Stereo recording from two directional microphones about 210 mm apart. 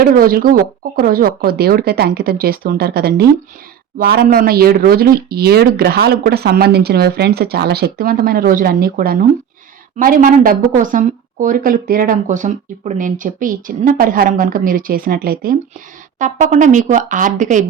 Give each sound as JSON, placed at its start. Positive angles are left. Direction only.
{"t": 0.0, "sound": "a woman's voice", "side_deg": -45}